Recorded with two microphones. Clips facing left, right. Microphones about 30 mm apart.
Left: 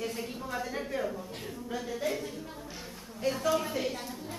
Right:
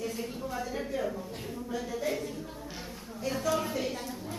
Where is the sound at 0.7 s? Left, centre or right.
Centre.